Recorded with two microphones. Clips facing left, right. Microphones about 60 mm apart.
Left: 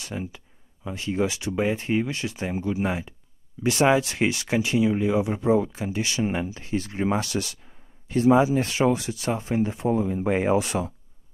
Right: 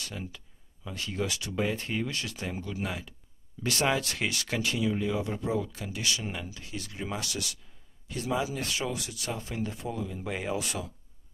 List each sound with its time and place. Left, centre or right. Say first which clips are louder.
0.0 s speech: left 6 dB; centre